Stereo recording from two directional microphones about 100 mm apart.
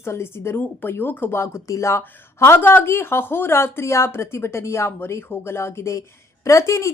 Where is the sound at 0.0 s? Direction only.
25° left (ahead or behind).